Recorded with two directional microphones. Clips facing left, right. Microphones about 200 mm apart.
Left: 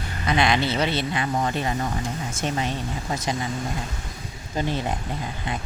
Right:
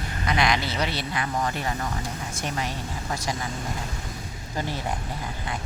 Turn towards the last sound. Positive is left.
turn(degrees=20)  # may be behind; listen again after turning